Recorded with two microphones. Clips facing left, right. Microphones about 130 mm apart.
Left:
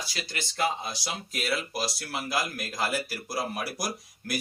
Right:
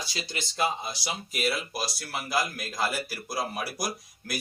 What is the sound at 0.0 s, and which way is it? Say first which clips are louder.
Speech: right 1 dB; 20° right (ahead or behind).